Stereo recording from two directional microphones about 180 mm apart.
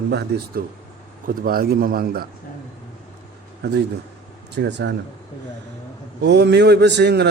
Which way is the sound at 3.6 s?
70° right (ahead or behind).